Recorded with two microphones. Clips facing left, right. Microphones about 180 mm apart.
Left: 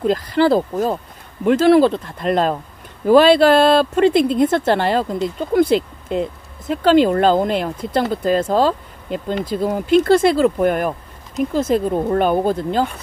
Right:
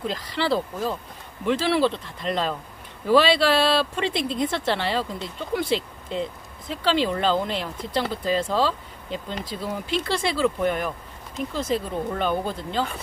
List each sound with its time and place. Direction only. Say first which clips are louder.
0.0 s speech: left 11 dB; 45° left (ahead or behind)